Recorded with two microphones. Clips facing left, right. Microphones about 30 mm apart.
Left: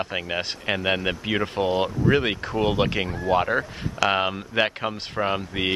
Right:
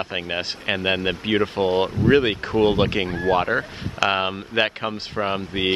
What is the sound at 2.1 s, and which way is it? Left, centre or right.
Speech, centre.